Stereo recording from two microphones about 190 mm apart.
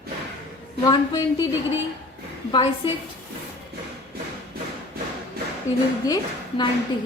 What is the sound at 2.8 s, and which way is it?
Speech, 25° left (ahead or behind).